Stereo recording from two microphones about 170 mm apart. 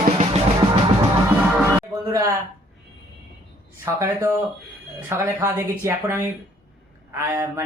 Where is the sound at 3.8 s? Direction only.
15° right (ahead or behind).